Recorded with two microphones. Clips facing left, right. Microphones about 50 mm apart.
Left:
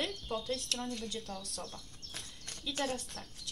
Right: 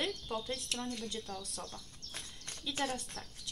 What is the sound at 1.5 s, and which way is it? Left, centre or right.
Bird, centre.